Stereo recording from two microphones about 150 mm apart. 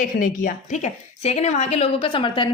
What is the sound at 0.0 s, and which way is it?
A woman's voice, 60° left (ahead or behind).